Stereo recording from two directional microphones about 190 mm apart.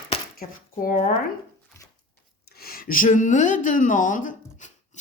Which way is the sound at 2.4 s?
55° left (ahead or behind).